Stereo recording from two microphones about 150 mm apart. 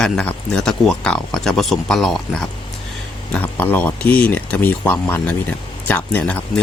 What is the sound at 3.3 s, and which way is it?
Speech, 10° left (ahead or behind).